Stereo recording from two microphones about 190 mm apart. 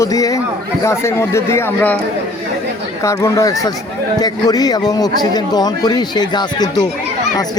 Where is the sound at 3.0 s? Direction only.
15° left (ahead or behind).